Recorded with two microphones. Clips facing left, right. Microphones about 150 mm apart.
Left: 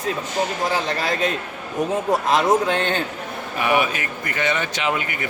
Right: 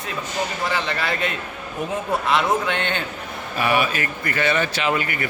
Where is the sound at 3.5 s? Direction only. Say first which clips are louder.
Even; 20° left (ahead or behind).